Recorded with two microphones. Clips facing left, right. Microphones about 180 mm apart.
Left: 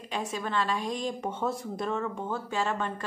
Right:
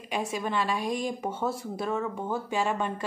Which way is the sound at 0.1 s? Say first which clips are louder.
Right 2 dB; 10° right (ahead or behind).